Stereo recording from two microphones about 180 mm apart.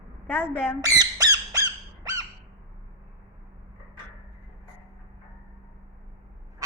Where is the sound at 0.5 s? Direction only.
10° left (ahead or behind).